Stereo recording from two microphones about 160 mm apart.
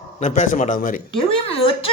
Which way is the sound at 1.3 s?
35° left (ahead or behind).